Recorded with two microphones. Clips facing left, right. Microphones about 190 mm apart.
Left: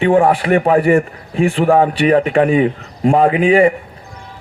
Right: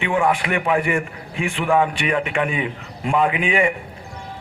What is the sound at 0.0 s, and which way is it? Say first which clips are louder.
A man's voice: left 8 dB; 35° left (ahead or behind).